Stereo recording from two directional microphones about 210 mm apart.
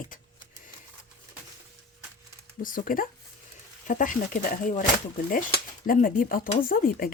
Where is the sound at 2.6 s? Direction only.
40° left (ahead or behind).